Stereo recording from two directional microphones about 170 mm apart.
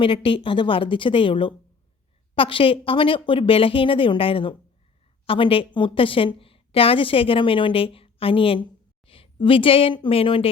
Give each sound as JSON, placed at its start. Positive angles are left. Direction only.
{"t": 0.0, "sound": "a woman's voice", "side_deg": 30}